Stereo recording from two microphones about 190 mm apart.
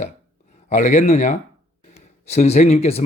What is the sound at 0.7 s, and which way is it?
Speech, 40° left (ahead or behind).